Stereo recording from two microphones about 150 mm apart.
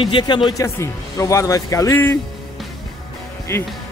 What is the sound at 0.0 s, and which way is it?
Speech, 35° left (ahead or behind).